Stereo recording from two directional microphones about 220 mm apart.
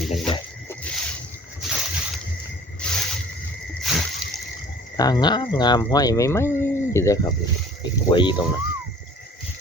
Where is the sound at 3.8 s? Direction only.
Centre (ahead or behind).